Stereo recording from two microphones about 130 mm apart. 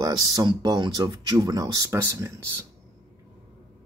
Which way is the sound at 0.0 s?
30° right (ahead or behind).